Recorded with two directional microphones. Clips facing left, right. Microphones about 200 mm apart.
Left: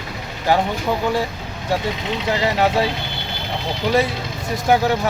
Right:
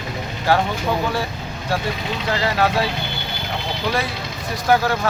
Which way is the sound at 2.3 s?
20° left (ahead or behind).